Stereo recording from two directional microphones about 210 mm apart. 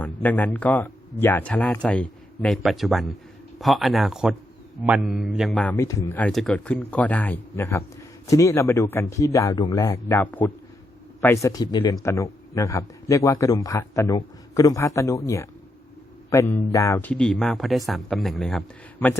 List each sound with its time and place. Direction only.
0.0 s a man's voice: 10° left (ahead or behind)
16.3 s speech: 15° left (ahead or behind)